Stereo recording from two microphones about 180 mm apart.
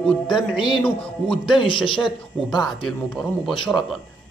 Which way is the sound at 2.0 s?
25° left (ahead or behind).